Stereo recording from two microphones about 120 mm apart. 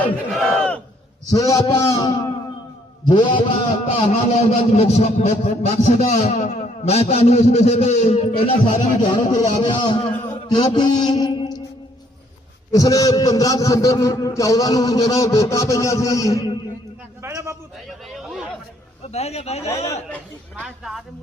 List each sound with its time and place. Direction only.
0.3 s battle cry: 5° left (ahead or behind)
1.3 s a man's voice: 30° left (ahead or behind)
2.0 s a man's voice: 40° left (ahead or behind)
4.4 s a man's voice: 65° left (ahead or behind)
9.0 s speech: 35° left (ahead or behind)
10.8 s a sound: 40° left (ahead or behind)
12.7 s a man's voice: 30° left (ahead or behind)
17.2 s a man's voice: 25° right (ahead or behind)
18.1 s chatter: centre (ahead or behind)
19.0 s a man's voice: 60° left (ahead or behind)
19.6 s a man's voice: 25° left (ahead or behind)
20.6 s speech: 5° right (ahead or behind)